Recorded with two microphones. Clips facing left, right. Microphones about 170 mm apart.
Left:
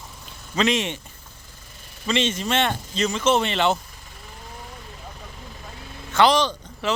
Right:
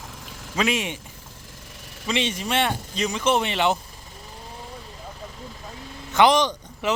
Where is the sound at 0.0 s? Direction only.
90° right.